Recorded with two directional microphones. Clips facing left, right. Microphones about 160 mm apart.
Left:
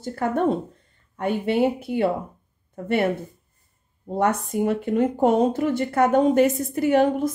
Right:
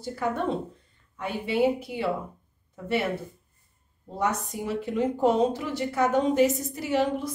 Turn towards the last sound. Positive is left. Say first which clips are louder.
# left 7 dB
turn(degrees=50)  # may be behind; listen again after turning